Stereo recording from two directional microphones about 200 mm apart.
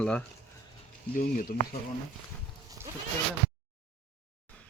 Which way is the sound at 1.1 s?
45° left (ahead or behind).